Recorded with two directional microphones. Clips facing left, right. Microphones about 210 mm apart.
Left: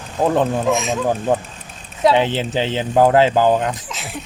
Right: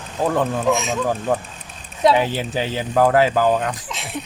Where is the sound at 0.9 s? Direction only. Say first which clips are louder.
Left 2 dB; 20° left (ahead or behind).